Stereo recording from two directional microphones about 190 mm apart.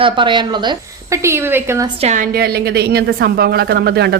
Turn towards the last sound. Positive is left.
turn(degrees=-60)  # may be behind; listen again after turning